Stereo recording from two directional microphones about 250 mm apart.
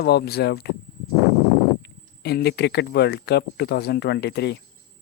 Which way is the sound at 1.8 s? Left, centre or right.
Left.